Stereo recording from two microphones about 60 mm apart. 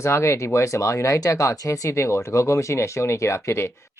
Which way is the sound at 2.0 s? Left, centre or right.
Left.